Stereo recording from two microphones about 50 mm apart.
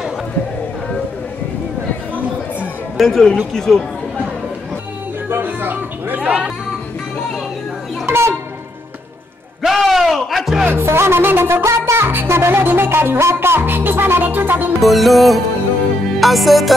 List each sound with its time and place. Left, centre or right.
3.0 s music: centre
3.5 s speech: centre
5.3 s a sound: right
8.1 s music: right
9.6 s music: centre
10.7 s music: right
14.8 s music: centre